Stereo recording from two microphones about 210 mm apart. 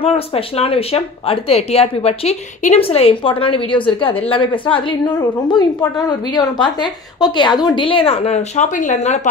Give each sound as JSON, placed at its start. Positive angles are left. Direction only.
{"t": 0.0, "sound": "speech", "side_deg": 30}